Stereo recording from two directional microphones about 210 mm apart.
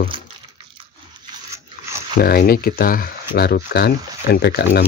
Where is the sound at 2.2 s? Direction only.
45° left (ahead or behind).